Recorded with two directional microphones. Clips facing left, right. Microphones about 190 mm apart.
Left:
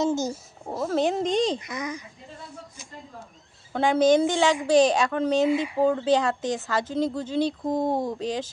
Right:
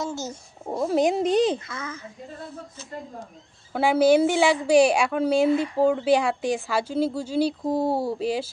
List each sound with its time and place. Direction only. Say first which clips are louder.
0.0 s speech: left 6 dB; 15° left (ahead or behind)
0.8 s speech: right 3 dB; 15° right (ahead or behind)
1.6 s a child's voice: left 3 dB; 15° left (ahead or behind)
3.7 s speech: right 1 dB; 5° right (ahead or behind)
5.5 s a child's voice: right 2 dB; 10° left (ahead or behind)
5.9 s speech: right 1 dB; 10° right (ahead or behind)